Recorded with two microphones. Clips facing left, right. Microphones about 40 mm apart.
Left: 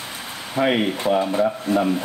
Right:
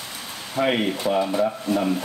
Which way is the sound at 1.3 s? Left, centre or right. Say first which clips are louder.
Left 2 dB; left.